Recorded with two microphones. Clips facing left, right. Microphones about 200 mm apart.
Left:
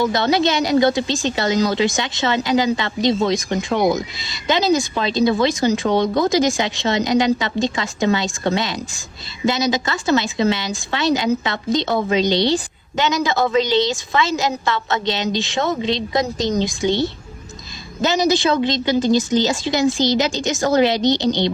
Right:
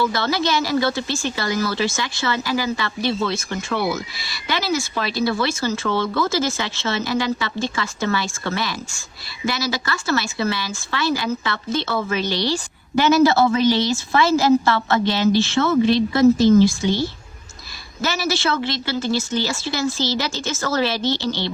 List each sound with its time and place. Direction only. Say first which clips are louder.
0.0 s a woman's voice: left 4 dB; 20° left (ahead or behind)
3.7 s speech: left 5 dB; 45° left (ahead or behind)
3.9 s a woman's voice: left 4 dB; 20° left (ahead or behind)